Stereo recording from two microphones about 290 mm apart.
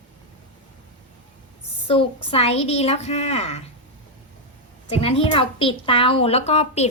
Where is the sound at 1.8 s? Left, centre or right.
Centre.